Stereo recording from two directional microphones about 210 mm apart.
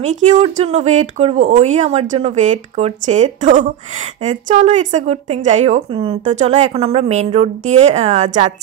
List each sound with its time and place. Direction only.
0.0 s speech: 35° right (ahead or behind)